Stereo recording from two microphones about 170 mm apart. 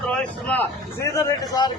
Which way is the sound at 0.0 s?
5° left (ahead or behind).